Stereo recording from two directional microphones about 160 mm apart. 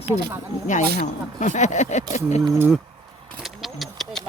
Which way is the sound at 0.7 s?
50° left (ahead or behind).